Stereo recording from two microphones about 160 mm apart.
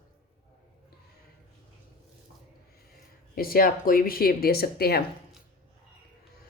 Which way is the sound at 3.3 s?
65° left (ahead or behind).